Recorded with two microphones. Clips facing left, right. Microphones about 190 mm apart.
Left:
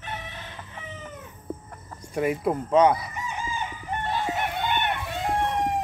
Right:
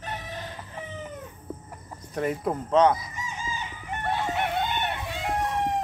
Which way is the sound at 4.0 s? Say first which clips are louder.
Right 1 dB; 65° right (ahead or behind).